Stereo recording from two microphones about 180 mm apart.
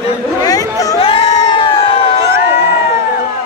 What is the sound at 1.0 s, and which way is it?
Crowd, 30° left (ahead or behind).